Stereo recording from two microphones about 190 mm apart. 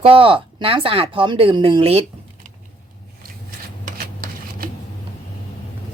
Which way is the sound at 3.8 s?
50° right (ahead or behind).